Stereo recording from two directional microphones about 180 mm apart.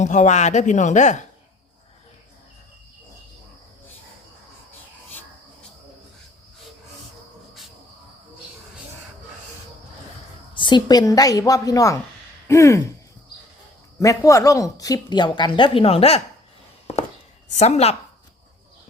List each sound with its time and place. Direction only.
0.0 s speech: 40° left (ahead or behind)
10.5 s a woman's voice: 25° left (ahead or behind)
12.5 s a sound: 15° left (ahead or behind)
14.3 s a woman's voice: 20° left (ahead or behind); by 16.2 s 35° left (ahead or behind)
16.9 s a sound: 35° left (ahead or behind)
17.5 s speech: 40° left (ahead or behind)